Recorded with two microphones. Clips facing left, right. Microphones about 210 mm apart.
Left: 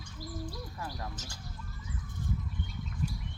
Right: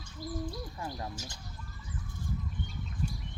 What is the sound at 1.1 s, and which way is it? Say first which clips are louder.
Speech: right 2 dB; 20° right (ahead or behind).